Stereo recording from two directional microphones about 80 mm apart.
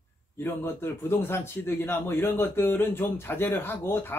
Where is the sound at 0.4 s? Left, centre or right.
Left.